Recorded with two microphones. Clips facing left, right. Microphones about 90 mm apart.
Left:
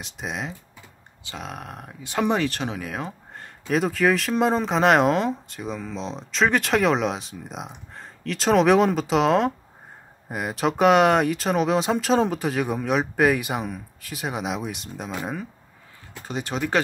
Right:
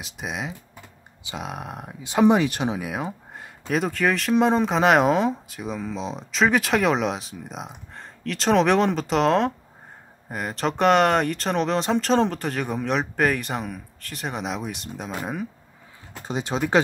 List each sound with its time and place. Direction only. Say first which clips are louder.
0.0 s speech: even; centre (ahead or behind)
1.2 s speech: right 2 dB; 15° right (ahead or behind)
3.6 s speech: left 2 dB; centre (ahead or behind)
16.3 s speech: right 2 dB; 20° right (ahead or behind)